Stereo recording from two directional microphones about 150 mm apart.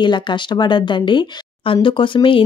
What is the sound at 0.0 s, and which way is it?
A woman's voice, 30° left (ahead or behind).